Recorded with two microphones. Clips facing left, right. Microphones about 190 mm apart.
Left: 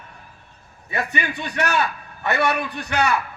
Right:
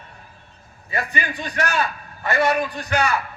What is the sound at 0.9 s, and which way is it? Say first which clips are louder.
A man's voice: left 1 dB; 70° left (ahead or behind).